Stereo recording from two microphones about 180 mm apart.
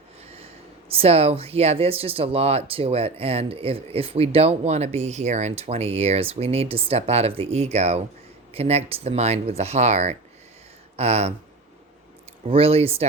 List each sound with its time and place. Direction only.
0.9 s speech: 35° right (ahead or behind)
12.5 s speech: 30° right (ahead or behind)